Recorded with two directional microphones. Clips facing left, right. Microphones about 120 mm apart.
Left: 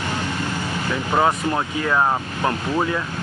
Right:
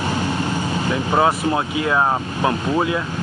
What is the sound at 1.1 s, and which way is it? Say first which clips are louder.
Speech: right 1 dB; 15° right (ahead or behind).